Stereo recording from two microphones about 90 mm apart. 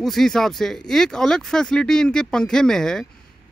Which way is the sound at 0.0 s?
5° left (ahead or behind).